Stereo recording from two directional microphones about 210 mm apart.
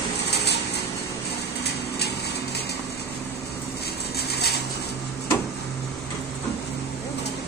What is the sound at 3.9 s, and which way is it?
Vehicle, 50° left (ahead or behind).